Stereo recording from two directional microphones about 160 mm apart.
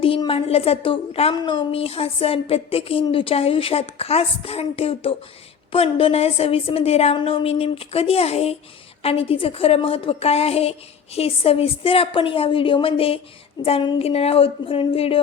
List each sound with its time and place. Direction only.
0.0 s a woman's voice: 35° left (ahead or behind)